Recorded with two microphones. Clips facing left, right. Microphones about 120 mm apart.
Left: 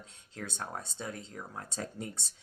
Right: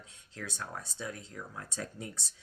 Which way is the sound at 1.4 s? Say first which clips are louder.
Left 1 dB; 30° left (ahead or behind).